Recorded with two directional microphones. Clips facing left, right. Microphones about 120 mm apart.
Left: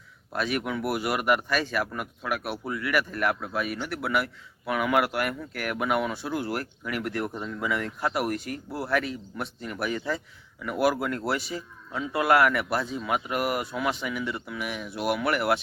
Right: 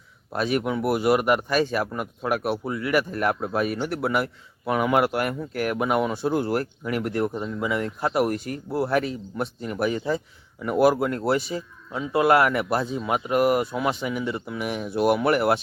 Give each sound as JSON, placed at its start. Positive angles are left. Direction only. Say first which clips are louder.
{"t": 0.3, "sound": "speech", "louder": "right 4 dB", "side_deg": -25}